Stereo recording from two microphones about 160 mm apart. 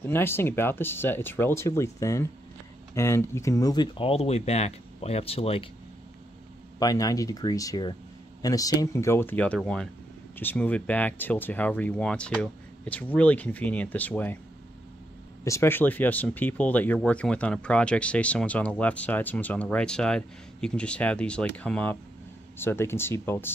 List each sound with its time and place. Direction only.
0.0 s speech: 15° left (ahead or behind); by 5.7 s 35° left (ahead or behind)
6.8 s speech: 20° left (ahead or behind)
15.4 s speech: 15° left (ahead or behind)